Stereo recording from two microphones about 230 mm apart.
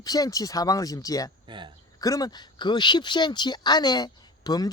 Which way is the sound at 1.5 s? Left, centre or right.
Right.